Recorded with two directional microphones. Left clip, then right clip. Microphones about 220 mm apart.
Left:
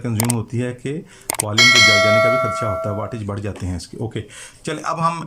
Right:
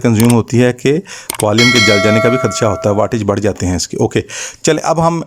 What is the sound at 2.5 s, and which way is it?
Speech, 40° right (ahead or behind).